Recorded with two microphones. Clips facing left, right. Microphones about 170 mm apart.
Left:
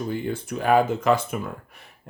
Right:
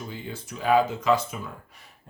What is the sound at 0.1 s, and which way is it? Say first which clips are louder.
Speech: left 9 dB; 55° left (ahead or behind).